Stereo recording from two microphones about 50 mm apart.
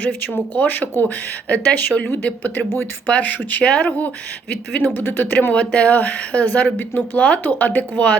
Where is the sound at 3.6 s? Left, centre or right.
Left.